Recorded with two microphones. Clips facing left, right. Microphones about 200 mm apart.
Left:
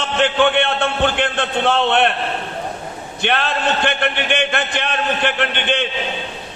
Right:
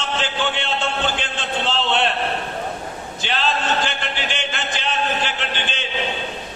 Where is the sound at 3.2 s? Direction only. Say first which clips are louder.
Left 4 dB; 60° left (ahead or behind).